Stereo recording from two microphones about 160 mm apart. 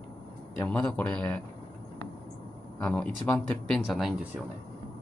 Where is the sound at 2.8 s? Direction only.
10° left (ahead or behind).